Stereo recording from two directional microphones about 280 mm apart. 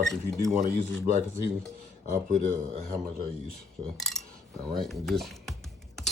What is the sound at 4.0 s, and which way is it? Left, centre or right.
Cutlery, centre.